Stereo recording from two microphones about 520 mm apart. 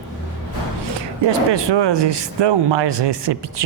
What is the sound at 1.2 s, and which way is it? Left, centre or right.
Speech, right.